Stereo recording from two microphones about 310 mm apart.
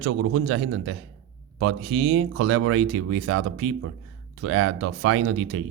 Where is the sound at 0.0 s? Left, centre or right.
Right.